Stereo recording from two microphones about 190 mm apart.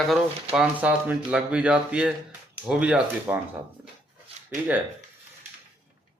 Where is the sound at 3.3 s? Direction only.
15° right (ahead or behind).